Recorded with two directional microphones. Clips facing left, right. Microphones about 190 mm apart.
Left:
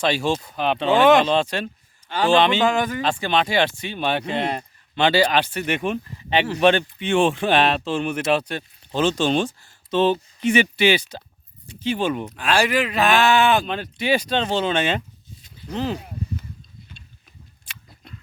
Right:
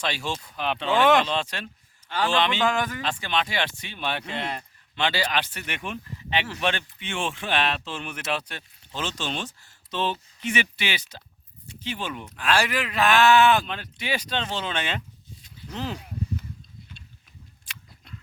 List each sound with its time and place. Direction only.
0.0 s speech: 25° left (ahead or behind)
3.0 s speech: 35° left (ahead or behind)
12.4 s speech: 15° left (ahead or behind)
13.7 s speech: 30° left (ahead or behind)
15.4 s a sound: 25° left (ahead or behind)